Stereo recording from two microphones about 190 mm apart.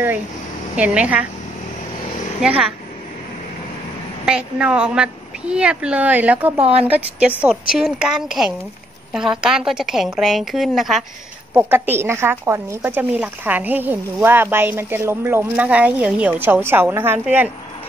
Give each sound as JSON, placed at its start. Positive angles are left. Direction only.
{"t": 0.7, "sound": "speech", "side_deg": -5}
{"t": 2.4, "sound": "speech", "side_deg": -5}
{"t": 4.3, "sound": "speech", "side_deg": -5}